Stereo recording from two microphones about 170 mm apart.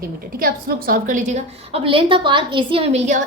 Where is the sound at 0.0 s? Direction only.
60° right (ahead or behind).